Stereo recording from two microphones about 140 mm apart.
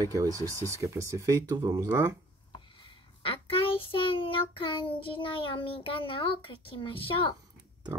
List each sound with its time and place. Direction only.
0.0 s speech: 25° right (ahead or behind)
3.2 s a sound: 40° left (ahead or behind)
4.1 s child singing: 40° left (ahead or behind)